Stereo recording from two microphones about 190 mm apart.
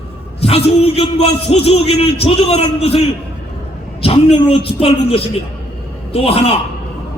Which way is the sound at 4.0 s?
30° left (ahead or behind).